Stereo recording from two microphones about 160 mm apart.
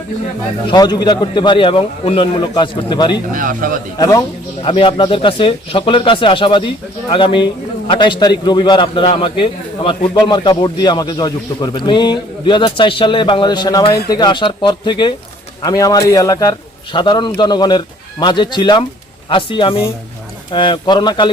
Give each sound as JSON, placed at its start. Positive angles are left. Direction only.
{"t": 0.7, "sound": "a man's voice", "side_deg": 25}
{"t": 3.3, "sound": "a man's voice", "side_deg": -60}
{"t": 3.9, "sound": "a man's voice", "side_deg": 20}
{"t": 4.6, "sound": "a man's voice", "side_deg": 35}